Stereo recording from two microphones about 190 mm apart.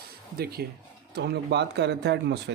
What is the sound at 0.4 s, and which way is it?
Speech, 55° right (ahead or behind).